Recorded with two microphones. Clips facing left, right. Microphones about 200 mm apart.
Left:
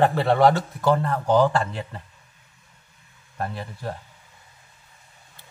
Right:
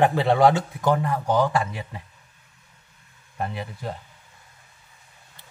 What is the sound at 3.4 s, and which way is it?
Speech, 5° right (ahead or behind).